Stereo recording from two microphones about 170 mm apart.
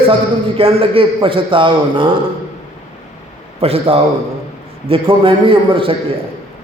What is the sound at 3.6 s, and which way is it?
A man's voice, 35° right (ahead or behind).